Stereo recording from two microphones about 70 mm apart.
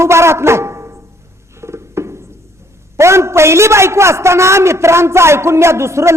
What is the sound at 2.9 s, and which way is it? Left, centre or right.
A man's voice, right.